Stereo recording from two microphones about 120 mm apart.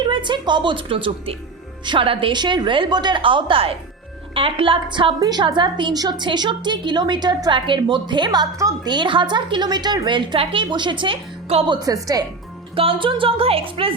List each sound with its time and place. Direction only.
0.0 s a woman's voice: 40° right (ahead or behind)
11.7 s a woman's voice: 30° right (ahead or behind)
12.7 s a woman's voice: 50° right (ahead or behind)